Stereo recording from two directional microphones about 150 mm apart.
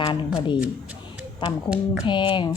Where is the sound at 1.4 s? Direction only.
35° left (ahead or behind).